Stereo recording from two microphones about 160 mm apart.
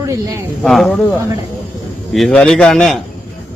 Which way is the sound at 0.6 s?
Centre (ahead or behind).